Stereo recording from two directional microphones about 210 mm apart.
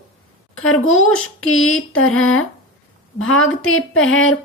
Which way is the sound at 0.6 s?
75° left (ahead or behind).